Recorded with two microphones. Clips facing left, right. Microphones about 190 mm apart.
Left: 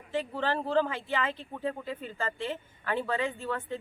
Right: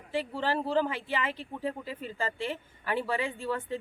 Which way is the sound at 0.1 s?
10° right (ahead or behind).